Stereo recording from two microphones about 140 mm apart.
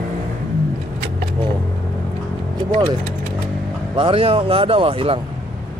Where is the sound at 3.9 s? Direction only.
40° right (ahead or behind).